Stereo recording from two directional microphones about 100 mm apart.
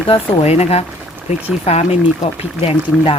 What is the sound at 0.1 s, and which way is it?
Speech, 90° left.